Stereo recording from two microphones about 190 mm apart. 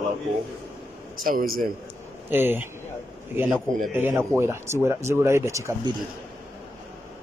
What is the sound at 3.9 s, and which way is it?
Speech, 10° right (ahead or behind).